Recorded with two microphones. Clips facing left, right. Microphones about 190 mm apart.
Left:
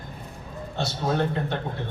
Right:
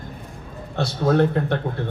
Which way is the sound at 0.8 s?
60° right (ahead or behind).